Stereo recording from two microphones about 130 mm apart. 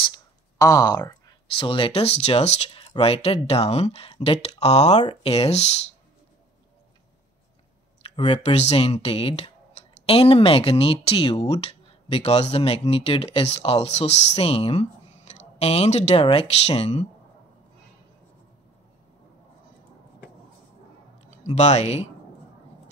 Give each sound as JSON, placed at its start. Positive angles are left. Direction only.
{"t": 0.1, "sound": "a sound", "side_deg": 25}
{"t": 1.6, "sound": "speech", "side_deg": 45}
{"t": 8.0, "sound": "speech", "side_deg": 45}
{"t": 21.4, "sound": "speech", "side_deg": 60}